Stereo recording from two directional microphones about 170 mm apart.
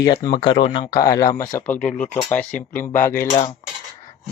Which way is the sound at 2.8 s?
10° left (ahead or behind).